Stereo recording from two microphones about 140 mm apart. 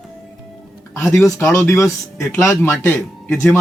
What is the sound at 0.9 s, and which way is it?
Speech, 20° left (ahead or behind).